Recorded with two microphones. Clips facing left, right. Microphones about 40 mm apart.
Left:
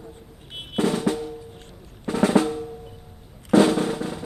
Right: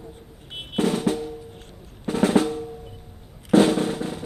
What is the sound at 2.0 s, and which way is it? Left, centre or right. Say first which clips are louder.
Drum: even; left.